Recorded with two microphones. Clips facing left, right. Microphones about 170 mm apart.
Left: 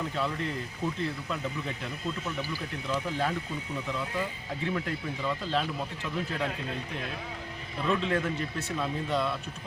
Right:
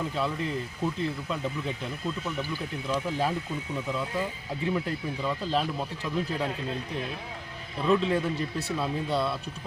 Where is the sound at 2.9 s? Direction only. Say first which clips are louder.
Right 2 dB; 10° right (ahead or behind).